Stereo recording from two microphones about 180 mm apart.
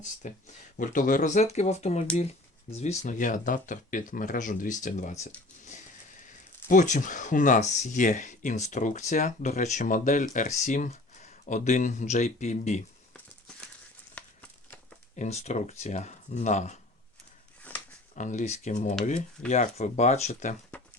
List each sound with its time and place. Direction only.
0.2 s speech: 45° left (ahead or behind)
6.7 s speech: 45° left (ahead or behind)
14.2 s a sound: 5° left (ahead or behind)
15.1 s speech: 40° left (ahead or behind)
17.6 s a sound: 10° left (ahead or behind)
18.1 s speech: 45° left (ahead or behind)